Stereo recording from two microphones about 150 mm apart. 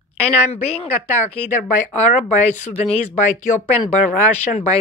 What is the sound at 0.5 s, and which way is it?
Speech, 45° left (ahead or behind).